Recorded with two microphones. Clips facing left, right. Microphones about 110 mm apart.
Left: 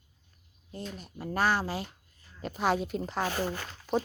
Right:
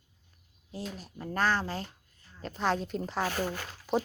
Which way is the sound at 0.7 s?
5° right (ahead or behind).